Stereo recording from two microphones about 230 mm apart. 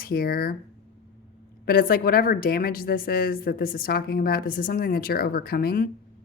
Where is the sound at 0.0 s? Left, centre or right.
Left.